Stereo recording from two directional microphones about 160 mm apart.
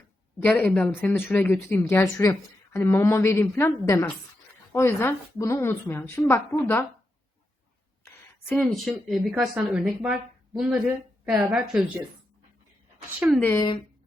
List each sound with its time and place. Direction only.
0.4 s speech: 10° left (ahead or behind)
8.0 s a sound: 15° left (ahead or behind)
8.6 s speech: centre (ahead or behind)
13.1 s speech: 10° right (ahead or behind)
13.4 s speech: 15° left (ahead or behind)